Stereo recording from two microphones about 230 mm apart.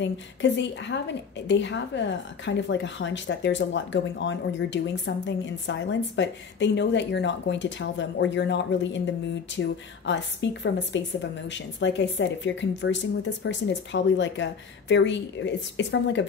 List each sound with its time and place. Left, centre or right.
0.0 s a woman's voice: left